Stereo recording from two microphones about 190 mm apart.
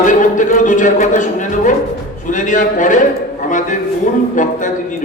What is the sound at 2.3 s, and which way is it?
Speech, 40° left (ahead or behind).